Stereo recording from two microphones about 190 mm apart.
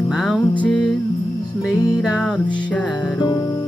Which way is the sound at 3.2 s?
25° left (ahead or behind).